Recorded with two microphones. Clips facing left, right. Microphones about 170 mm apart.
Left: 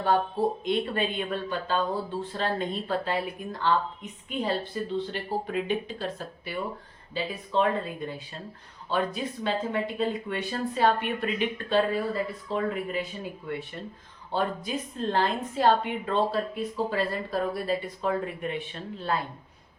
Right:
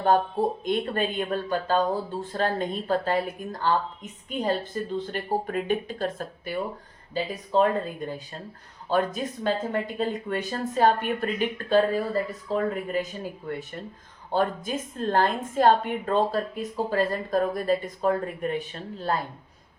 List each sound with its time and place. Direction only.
0.6 s speech: 45° right (ahead or behind)